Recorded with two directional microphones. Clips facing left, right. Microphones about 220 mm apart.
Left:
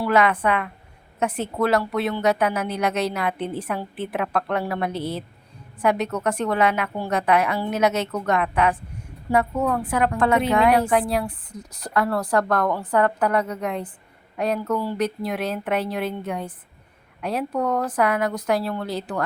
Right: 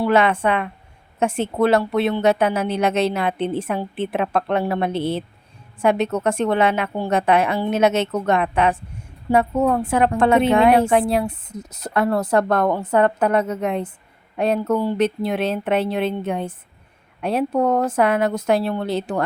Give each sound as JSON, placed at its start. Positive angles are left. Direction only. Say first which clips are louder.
{"t": 0.0, "sound": "a woman's voice", "louder": "right 3 dB", "side_deg": -25}